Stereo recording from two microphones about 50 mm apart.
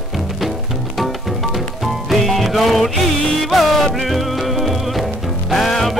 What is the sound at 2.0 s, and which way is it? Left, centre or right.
Music, centre.